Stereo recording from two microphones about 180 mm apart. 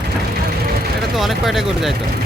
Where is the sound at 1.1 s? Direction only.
Centre (ahead or behind).